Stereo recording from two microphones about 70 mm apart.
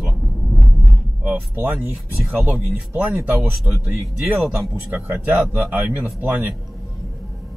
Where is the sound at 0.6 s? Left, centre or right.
Left.